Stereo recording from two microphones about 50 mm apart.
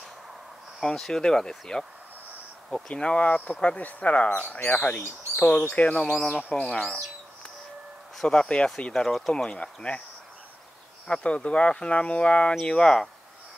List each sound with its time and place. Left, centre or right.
0.9 s speech: centre
2.9 s speech: left
5.9 s speech: centre
6.7 s speech: left
8.2 s speech: centre
9.6 s speech: left
11.1 s speech: left